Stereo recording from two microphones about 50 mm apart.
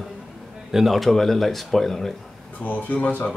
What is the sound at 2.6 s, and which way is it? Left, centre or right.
Speech, left.